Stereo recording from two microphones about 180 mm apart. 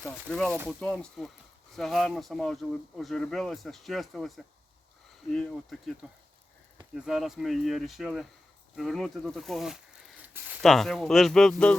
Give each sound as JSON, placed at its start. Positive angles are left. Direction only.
{"t": 0.0, "sound": "speech", "side_deg": 5}
{"t": 6.9, "sound": "speech", "side_deg": -5}